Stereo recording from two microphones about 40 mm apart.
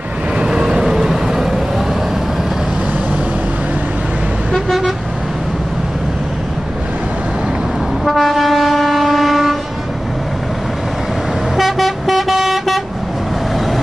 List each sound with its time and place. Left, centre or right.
0.4 s vehicle: right
4.6 s vehicle: centre
8.0 s train: centre
11.5 s vehicle: centre